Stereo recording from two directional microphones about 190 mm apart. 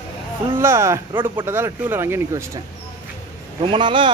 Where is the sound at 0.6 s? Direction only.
15° right (ahead or behind).